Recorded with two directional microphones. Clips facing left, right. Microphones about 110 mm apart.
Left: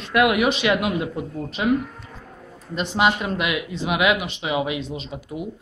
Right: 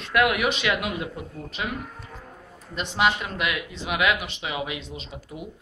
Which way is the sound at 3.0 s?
20° left (ahead or behind).